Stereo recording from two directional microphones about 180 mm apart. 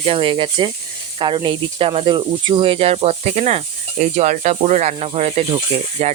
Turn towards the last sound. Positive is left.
turn(degrees=-40)  # may be behind; listen again after turning